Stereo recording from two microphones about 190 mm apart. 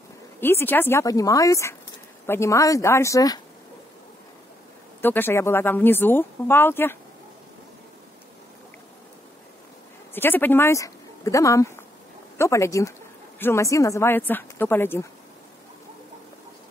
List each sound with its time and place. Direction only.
0.4 s speech: 10° left (ahead or behind)
5.0 s speech: 10° left (ahead or behind)
10.1 s speech: 10° left (ahead or behind)